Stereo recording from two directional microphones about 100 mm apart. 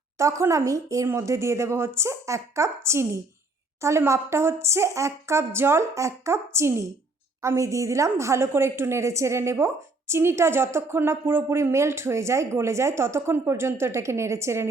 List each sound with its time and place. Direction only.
0.2 s a woman's voice: 30° right (ahead or behind)